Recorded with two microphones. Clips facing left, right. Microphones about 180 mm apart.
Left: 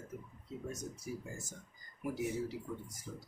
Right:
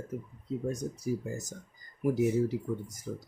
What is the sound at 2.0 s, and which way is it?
Speech, 45° right (ahead or behind).